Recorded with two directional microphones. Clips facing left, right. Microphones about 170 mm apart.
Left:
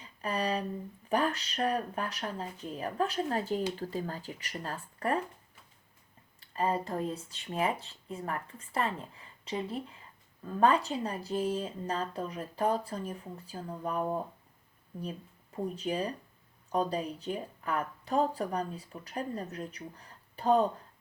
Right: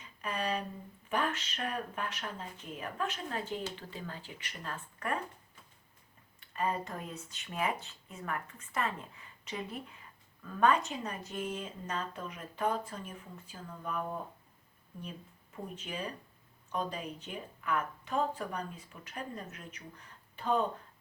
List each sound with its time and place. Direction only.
0.0 s a sound: 35° left (ahead or behind)
1.1 s speech: 35° left (ahead or behind)
6.4 s speech: 30° left (ahead or behind)
15.5 s speech: 35° left (ahead or behind)